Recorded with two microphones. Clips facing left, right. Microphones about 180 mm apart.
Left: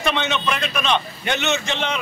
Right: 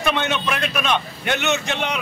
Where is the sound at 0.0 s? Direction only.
5° right (ahead or behind).